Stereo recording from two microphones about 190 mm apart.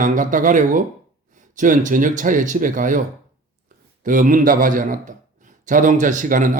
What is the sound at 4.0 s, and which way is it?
Speech, 45° right (ahead or behind).